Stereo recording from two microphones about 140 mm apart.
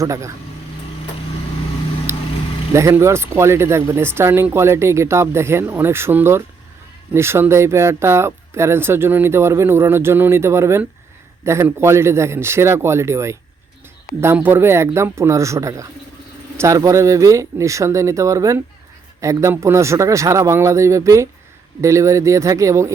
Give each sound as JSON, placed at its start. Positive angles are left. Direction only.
{"t": 0.0, "sound": "speech", "side_deg": -20}
{"t": 2.7, "sound": "speech", "side_deg": -20}